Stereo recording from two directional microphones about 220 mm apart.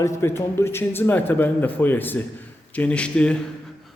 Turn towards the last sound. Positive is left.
turn(degrees=5)  # may be behind; listen again after turning